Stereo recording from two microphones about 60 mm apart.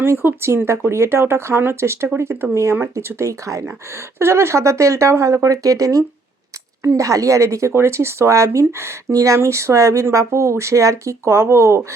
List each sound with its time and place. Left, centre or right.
0.0 s speech: right
4.2 s speech: right